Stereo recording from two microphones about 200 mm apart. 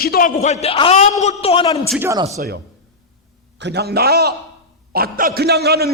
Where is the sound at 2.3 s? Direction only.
50° right (ahead or behind).